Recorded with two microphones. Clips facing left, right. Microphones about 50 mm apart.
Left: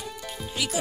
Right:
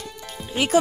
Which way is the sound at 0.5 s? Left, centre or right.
Right.